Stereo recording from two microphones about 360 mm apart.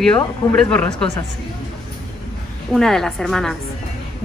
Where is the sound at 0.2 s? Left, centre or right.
Centre.